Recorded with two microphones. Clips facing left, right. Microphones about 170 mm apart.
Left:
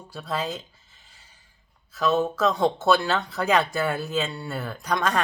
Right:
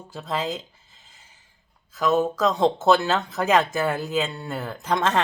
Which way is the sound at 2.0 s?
20° right (ahead or behind).